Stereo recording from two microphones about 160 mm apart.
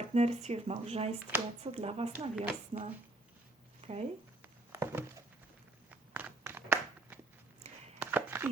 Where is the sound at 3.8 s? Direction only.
40° right (ahead or behind).